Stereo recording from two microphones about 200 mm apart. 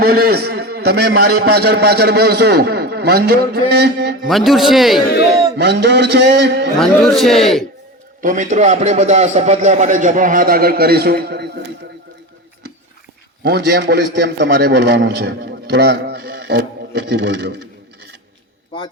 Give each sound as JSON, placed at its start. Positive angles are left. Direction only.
{"t": 0.0, "sound": "a man's voice", "side_deg": -50}
{"t": 4.3, "sound": "a man's voice", "side_deg": 0}
{"t": 5.5, "sound": "a man's voice", "side_deg": -60}
{"t": 6.7, "sound": "a man's voice", "side_deg": 0}
{"t": 8.2, "sound": "a man's voice", "side_deg": -40}
{"t": 13.4, "sound": "a man's voice", "side_deg": -55}